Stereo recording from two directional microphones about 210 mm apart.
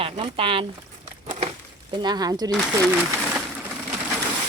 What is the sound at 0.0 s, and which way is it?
Speech, 25° right (ahead or behind).